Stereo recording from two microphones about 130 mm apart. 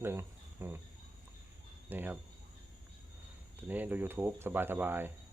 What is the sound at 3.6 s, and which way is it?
Speech, 15° right (ahead or behind).